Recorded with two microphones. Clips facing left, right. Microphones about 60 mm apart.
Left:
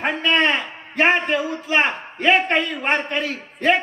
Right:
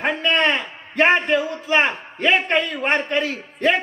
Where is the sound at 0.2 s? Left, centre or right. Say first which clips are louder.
Left 2 dB; centre.